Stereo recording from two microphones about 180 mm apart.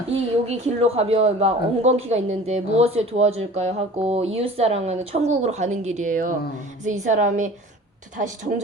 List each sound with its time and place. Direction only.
0.4 s a woman's voice: 35° right (ahead or behind)